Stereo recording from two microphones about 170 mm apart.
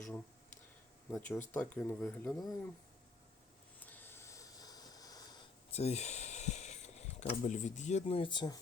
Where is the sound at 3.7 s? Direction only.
10° left (ahead or behind).